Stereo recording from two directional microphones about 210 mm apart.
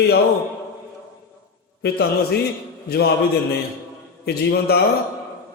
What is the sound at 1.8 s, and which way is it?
Speech, 50° left (ahead or behind).